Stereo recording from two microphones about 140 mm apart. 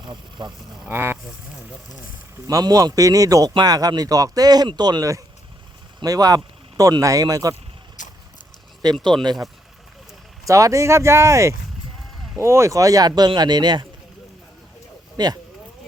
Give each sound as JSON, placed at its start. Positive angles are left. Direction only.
{"t": 0.0, "sound": "speech", "side_deg": -30}
{"t": 0.9, "sound": "speech", "side_deg": -15}
{"t": 2.5, "sound": "speech", "side_deg": -25}
{"t": 8.0, "sound": "vehicle", "side_deg": 65}
{"t": 8.8, "sound": "speech", "side_deg": -30}
{"t": 10.4, "sound": "speech", "side_deg": -25}
{"t": 15.2, "sound": "speech", "side_deg": -30}